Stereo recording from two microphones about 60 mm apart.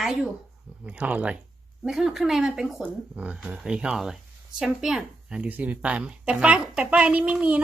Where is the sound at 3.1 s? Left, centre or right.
Right.